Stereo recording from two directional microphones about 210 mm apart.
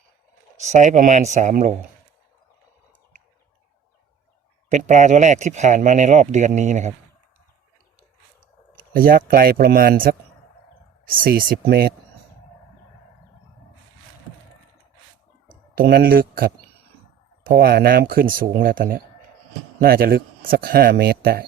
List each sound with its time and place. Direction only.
0.6 s speech: 35° right (ahead or behind)
4.7 s speech: 35° right (ahead or behind)
8.4 s speech: 40° right (ahead or behind)
15.7 s speech: 45° right (ahead or behind)